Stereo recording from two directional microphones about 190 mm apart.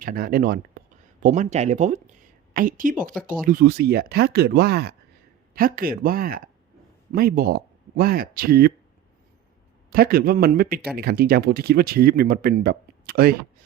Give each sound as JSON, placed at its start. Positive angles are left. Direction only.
{"t": 0.0, "sound": "a woman's voice", "side_deg": -50}
{"t": 9.9, "sound": "speech", "side_deg": -50}